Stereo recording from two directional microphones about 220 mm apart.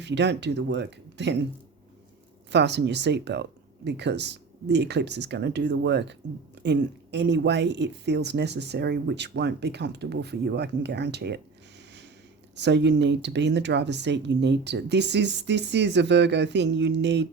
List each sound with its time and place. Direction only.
0.0 s speech: 50° right (ahead or behind)
2.5 s speech: 50° right (ahead or behind)
12.5 s speech: 50° right (ahead or behind)